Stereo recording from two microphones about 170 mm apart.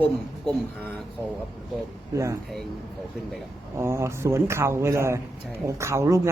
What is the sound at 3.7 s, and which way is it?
A man's voice, 15° right (ahead or behind).